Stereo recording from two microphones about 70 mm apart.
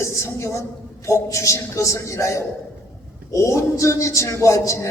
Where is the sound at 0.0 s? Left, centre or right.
Left.